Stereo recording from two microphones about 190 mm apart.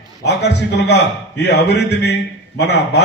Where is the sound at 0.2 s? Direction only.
65° left (ahead or behind).